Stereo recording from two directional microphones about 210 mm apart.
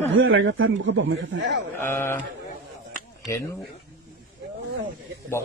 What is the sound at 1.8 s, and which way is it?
Speech, 10° left (ahead or behind).